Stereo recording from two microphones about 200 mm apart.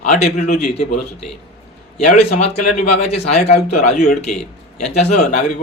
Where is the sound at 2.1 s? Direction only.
40° left (ahead or behind).